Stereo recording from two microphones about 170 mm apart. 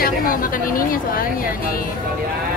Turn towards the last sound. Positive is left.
turn(degrees=55)  # may be behind; listen again after turning